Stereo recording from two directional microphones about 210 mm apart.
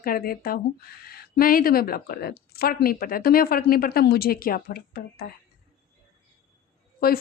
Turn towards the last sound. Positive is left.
turn(degrees=45)  # may be behind; listen again after turning